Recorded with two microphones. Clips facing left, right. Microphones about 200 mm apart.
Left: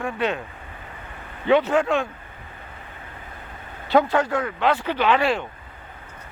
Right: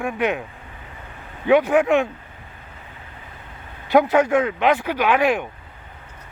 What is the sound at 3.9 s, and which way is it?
Speech, 15° right (ahead or behind).